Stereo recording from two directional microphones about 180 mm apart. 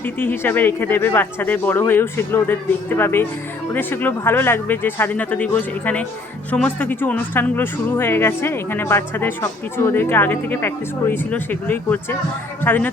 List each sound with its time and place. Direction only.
0.0 s speech: 10° left (ahead or behind)